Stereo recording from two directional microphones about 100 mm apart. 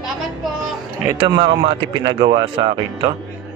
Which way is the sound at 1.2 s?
45° right (ahead or behind).